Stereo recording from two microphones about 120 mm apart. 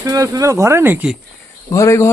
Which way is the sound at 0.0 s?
30° right (ahead or behind).